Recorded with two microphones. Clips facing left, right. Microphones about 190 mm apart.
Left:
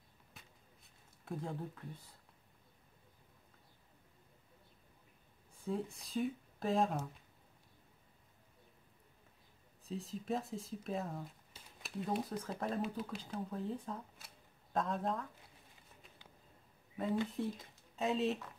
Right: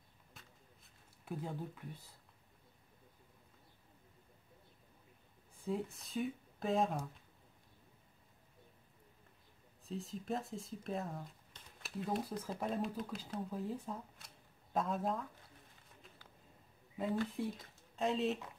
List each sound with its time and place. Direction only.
1.2 s speech: 5° right (ahead or behind)
5.7 s speech: centre (ahead or behind)
9.8 s speech: centre (ahead or behind)
17.6 s speech: centre (ahead or behind)